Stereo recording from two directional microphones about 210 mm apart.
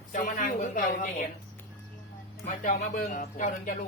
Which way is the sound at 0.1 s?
40° left (ahead or behind).